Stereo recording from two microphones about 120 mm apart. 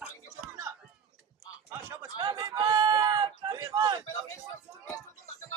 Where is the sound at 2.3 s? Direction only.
30° right (ahead or behind).